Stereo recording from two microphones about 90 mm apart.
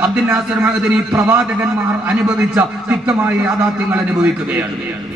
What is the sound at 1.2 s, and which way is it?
Speech, 20° right (ahead or behind).